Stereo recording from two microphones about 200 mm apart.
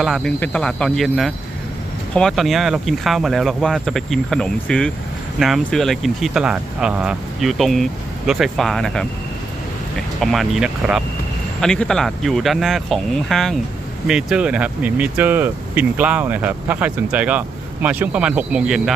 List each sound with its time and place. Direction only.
0.0 s speech: centre (ahead or behind)
10.2 s speech: centre (ahead or behind)